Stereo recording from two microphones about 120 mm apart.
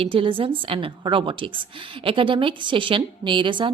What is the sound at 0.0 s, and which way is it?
A woman's voice, 50° right (ahead or behind).